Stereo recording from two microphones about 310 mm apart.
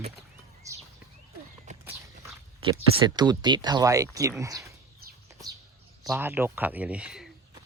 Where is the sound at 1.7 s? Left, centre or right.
Right.